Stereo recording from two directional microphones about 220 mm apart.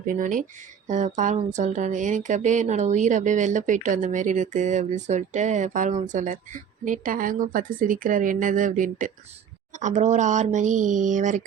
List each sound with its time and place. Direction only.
0.0 s speech: 35° right (ahead or behind)